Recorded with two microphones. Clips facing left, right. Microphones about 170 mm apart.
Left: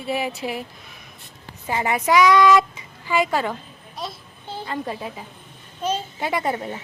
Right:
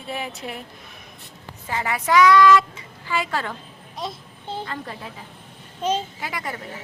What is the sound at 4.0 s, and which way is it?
Child singing, 20° right (ahead or behind).